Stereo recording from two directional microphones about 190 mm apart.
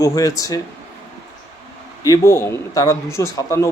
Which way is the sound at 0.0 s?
20° left (ahead or behind).